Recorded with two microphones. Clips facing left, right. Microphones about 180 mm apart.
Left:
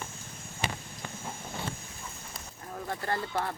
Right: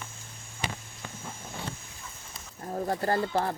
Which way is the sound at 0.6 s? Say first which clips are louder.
Left 1 dB; 60° left (ahead or behind).